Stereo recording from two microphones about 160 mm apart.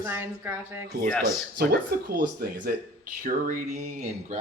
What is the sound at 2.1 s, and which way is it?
Speech, 70° right (ahead or behind).